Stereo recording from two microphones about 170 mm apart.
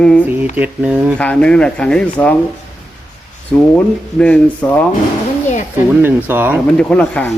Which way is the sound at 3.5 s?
5° left (ahead or behind).